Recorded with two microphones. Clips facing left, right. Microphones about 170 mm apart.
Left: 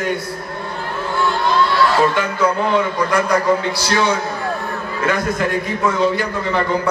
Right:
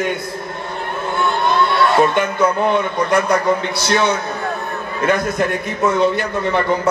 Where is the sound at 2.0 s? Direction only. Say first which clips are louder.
Right 2 dB; 20° right (ahead or behind).